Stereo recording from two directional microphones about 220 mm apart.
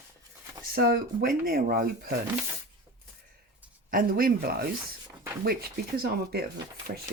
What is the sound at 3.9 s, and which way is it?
Speech, 40° right (ahead or behind).